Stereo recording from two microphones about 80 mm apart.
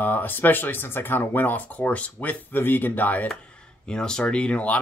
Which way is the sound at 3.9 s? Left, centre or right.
Centre.